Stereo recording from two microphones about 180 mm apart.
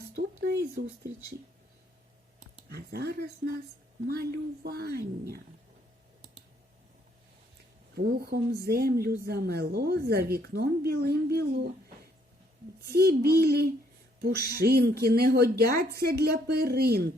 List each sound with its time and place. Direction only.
0.2 s a sound: 65° right (ahead or behind)
2.6 s a woman's voice: 60° right (ahead or behind)
7.9 s a woman's voice: 60° right (ahead or behind)
12.9 s a woman's voice: 60° right (ahead or behind)
14.2 s a sound: 60° right (ahead or behind)
14.6 s a woman's voice: 60° right (ahead or behind)